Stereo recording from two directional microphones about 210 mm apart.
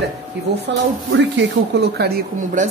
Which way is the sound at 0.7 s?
55° right (ahead or behind).